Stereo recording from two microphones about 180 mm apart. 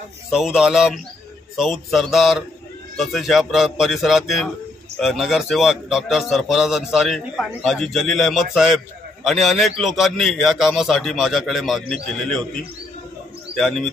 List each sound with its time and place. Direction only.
0.3 s a man's voice: 5° right (ahead or behind)
13.6 s a man's voice: centre (ahead or behind)